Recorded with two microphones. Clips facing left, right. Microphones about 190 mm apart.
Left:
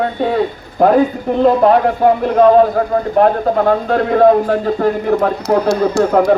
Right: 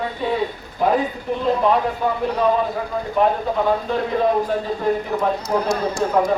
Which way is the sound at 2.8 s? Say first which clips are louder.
Left 7 dB; 55° left (ahead or behind).